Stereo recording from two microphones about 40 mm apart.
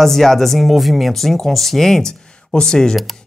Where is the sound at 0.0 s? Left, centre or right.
Centre.